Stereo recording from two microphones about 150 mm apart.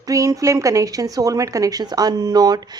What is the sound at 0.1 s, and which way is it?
Speech, 20° right (ahead or behind).